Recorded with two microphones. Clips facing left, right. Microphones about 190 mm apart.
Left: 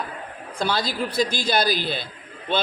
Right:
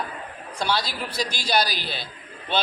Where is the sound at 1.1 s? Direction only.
50° left (ahead or behind).